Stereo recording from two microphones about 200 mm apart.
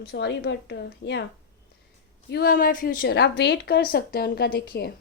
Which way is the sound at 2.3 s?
50° left (ahead or behind).